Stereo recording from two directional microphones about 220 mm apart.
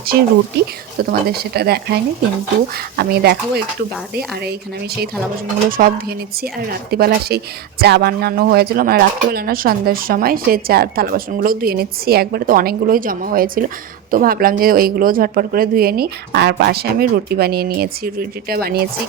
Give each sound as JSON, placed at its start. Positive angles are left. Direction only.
{"t": 0.5, "sound": "speech", "side_deg": -50}
{"t": 5.7, "sound": "speech", "side_deg": -40}